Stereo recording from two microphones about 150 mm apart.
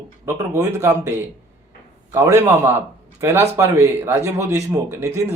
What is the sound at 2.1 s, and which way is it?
A man's voice, 15° right (ahead or behind).